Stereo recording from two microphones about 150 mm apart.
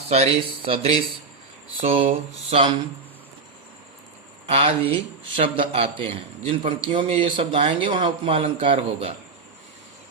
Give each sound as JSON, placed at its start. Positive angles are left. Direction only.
{"t": 0.1, "sound": "speech", "side_deg": -45}
{"t": 4.4, "sound": "speech", "side_deg": -40}